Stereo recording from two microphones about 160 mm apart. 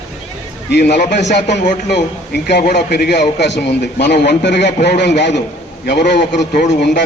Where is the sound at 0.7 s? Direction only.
90° left.